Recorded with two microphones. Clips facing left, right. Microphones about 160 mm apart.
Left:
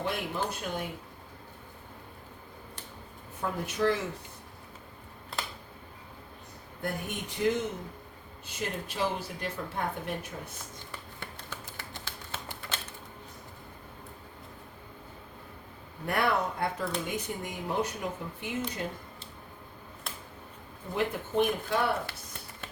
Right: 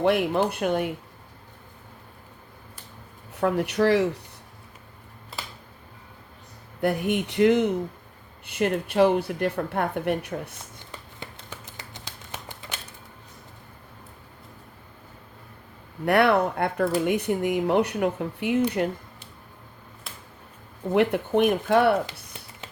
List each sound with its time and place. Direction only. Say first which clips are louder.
0.0 s a woman's voice: right 11 dB; 65° right (ahead or behind)
3.3 s speech: right 10 dB; 75° right (ahead or behind)
6.8 s a woman's voice: right 11 dB; 70° right (ahead or behind)
10.9 s a sound: right 4 dB; 20° right (ahead or behind)
16.0 s speech: right 9 dB; 70° right (ahead or behind)
20.9 s speech: right 8 dB; 70° right (ahead or behind)